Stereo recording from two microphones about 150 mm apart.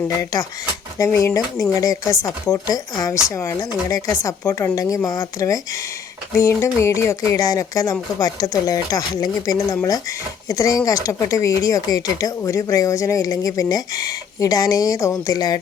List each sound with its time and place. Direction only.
0.3 s speech: 25° left (ahead or behind)